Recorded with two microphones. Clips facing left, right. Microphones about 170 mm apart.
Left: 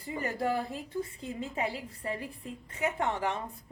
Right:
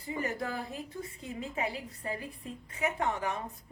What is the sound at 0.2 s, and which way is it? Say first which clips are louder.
A woman's voice: left 5 dB; 30° left (ahead or behind).